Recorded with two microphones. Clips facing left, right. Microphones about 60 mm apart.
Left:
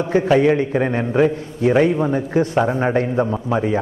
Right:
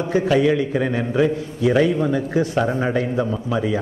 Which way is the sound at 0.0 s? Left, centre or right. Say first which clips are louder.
Left 2 dB; left.